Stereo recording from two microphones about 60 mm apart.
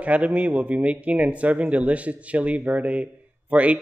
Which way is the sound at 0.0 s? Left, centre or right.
Right.